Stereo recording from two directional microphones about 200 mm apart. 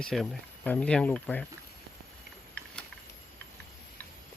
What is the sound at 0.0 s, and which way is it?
Speech, centre (ahead or behind).